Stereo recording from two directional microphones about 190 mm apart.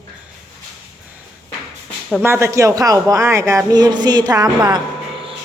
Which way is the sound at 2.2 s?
15° right (ahead or behind).